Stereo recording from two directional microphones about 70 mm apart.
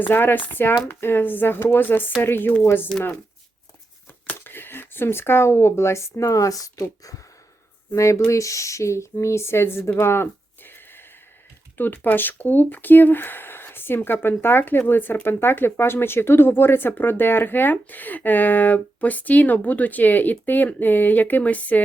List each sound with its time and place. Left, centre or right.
0.0 s speech: left
4.4 s speech: left
7.9 s speech: left